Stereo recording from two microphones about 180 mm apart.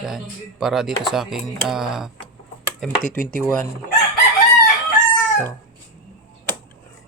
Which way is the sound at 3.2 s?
50° left (ahead or behind).